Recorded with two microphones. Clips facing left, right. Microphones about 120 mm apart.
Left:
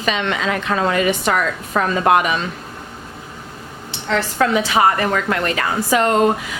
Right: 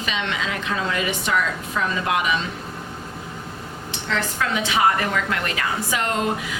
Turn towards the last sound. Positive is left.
turn(degrees=50)  # may be behind; listen again after turning